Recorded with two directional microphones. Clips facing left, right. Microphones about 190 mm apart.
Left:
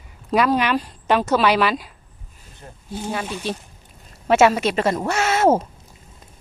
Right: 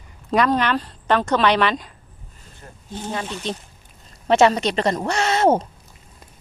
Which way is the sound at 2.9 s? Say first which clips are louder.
Left 1 dB; 10° left (ahead or behind).